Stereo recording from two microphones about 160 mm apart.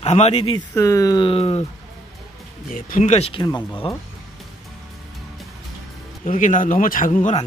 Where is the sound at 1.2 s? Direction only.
35° left (ahead or behind).